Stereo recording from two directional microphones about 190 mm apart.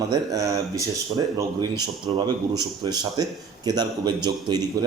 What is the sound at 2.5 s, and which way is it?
A man's voice, 20° right (ahead or behind).